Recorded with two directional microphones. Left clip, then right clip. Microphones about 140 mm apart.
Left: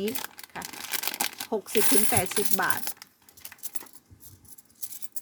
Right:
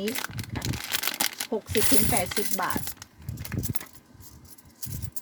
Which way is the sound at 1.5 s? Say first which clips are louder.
Left 4 dB; 50° left (ahead or behind).